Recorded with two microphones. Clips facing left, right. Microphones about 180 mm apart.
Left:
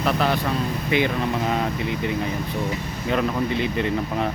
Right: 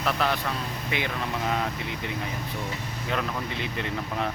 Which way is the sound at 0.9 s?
Centre (ahead or behind).